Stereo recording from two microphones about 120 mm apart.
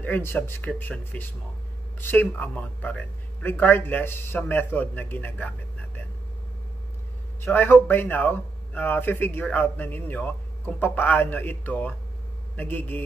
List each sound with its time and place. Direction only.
0.0 s speech: 15° left (ahead or behind)
7.4 s speech: 15° left (ahead or behind)